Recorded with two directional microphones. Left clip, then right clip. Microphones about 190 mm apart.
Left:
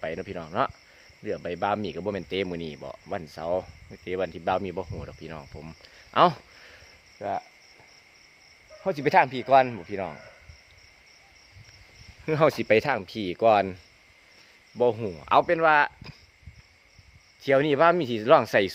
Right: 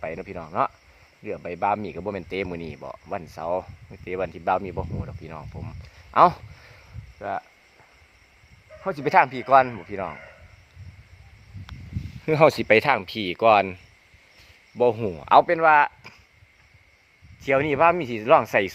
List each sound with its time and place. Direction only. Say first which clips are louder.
0.0 s speech: even; 10° left (ahead or behind)
8.8 s speech: right 2 dB; 5° left (ahead or behind)
12.2 s speech: right 5 dB; 25° right (ahead or behind)
12.6 s speech: right 4 dB; 10° right (ahead or behind)
14.8 s speech: right 3 dB; 20° right (ahead or behind)
15.4 s speech: right 3 dB; 5° left (ahead or behind)
17.4 s speech: right 1 dB; 15° left (ahead or behind)